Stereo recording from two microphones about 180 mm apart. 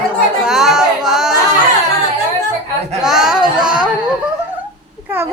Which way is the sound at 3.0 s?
5° right (ahead or behind).